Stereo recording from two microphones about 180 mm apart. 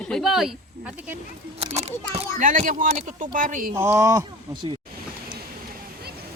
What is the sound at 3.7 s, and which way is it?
Speech, 15° right (ahead or behind).